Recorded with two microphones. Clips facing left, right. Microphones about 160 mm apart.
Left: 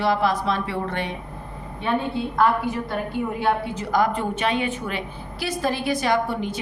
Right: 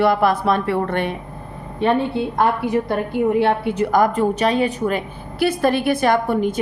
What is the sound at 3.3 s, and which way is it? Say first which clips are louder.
Speech: right 6 dB; 70° right (ahead or behind).